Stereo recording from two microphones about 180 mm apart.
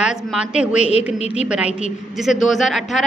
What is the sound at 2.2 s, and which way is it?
Speech, centre (ahead or behind).